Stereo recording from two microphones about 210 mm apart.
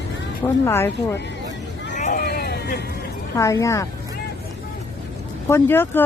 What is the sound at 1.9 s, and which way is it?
Vehicle, 35° left (ahead or behind).